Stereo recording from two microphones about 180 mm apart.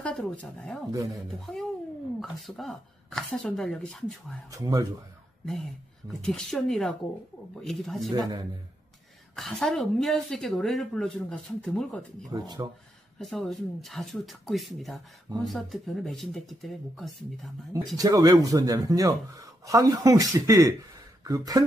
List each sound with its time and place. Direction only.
0.0 s a woman's voice: 5° left (ahead or behind)
4.5 s speech: 20° right (ahead or behind)
6.0 s a woman's voice: centre (ahead or behind)
8.1 s speech: 20° right (ahead or behind)
9.3 s a woman's voice: centre (ahead or behind)
12.3 s speech: 20° right (ahead or behind)
13.2 s a woman's voice: centre (ahead or behind)
17.9 s speech: 20° right (ahead or behind)